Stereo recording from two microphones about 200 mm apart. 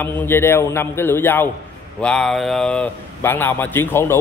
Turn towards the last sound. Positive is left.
turn(degrees=10)  # may be behind; listen again after turning